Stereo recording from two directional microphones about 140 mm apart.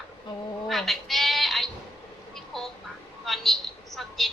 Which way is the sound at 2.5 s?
Centre (ahead or behind).